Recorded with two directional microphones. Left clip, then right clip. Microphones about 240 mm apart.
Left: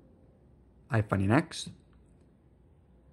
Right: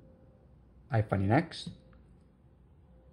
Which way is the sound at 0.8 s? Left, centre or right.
Left.